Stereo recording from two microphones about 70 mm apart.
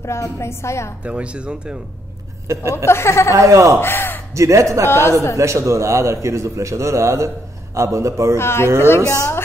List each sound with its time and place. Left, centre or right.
0.0 s a woman's voice: left
1.0 s speech: centre
2.4 s speech: right
2.7 s a woman's voice: left
3.3 s a man's voice: right
3.8 s a woman's voice: left
4.4 s a man's voice: right
4.8 s a woman's voice: left
5.4 s a man's voice: right
8.4 s a woman's voice: left